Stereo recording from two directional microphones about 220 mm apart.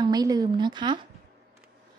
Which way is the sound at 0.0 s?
15° right (ahead or behind).